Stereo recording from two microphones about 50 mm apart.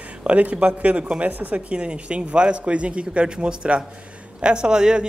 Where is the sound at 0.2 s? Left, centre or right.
Right.